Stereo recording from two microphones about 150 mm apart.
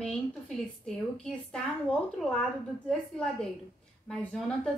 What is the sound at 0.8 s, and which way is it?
A woman's voice, 5° left (ahead or behind).